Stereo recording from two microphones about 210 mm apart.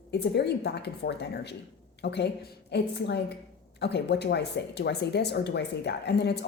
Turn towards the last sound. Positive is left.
turn(degrees=55)  # may be behind; listen again after turning